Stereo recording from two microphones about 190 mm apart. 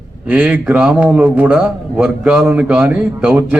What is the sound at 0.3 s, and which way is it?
A man's voice, 10° right (ahead or behind).